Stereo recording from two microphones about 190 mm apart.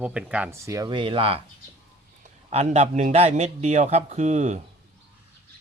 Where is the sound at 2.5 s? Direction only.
35° right (ahead or behind).